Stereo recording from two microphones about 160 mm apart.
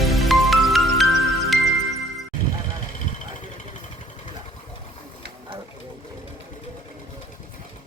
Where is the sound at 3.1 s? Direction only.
50° left (ahead or behind).